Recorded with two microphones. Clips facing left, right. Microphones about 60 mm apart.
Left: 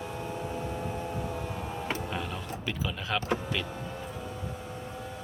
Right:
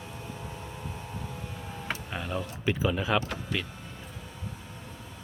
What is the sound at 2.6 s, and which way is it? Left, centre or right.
Speech, centre.